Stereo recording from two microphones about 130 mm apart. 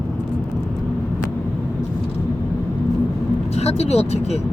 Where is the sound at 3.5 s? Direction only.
55° left (ahead or behind).